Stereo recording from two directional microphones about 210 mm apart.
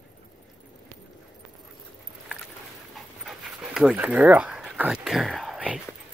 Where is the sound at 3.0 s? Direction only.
Centre (ahead or behind).